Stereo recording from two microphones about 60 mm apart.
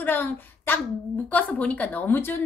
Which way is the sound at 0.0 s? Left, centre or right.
Left.